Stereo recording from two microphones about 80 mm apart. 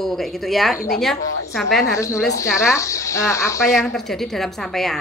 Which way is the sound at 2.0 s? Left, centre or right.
Left.